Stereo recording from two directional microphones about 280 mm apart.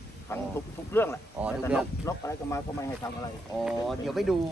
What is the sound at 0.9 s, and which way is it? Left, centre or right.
Speech, centre.